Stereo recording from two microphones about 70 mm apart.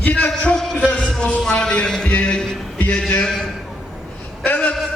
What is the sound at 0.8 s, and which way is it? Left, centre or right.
Music, centre.